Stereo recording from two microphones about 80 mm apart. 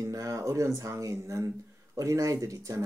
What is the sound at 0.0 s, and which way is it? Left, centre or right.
Speech, right.